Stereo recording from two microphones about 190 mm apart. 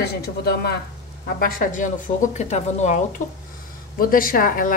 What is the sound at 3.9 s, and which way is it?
Speech, 50° left (ahead or behind).